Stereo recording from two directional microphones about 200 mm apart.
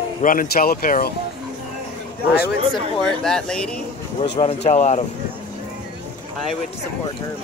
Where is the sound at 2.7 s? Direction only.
5° left (ahead or behind).